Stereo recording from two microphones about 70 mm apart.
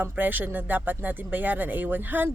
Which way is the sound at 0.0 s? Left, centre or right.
Right.